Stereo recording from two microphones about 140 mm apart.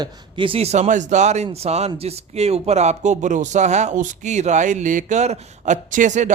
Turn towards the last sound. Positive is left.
turn(degrees=-60)  # may be behind; listen again after turning